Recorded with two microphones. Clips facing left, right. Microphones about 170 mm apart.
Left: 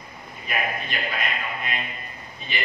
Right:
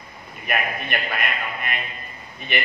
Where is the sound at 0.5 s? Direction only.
60° right (ahead or behind).